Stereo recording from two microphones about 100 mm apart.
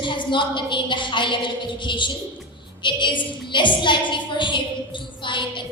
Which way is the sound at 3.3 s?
55° left (ahead or behind).